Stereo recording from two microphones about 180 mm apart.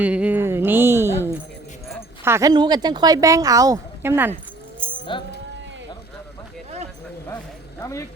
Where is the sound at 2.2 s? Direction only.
15° right (ahead or behind).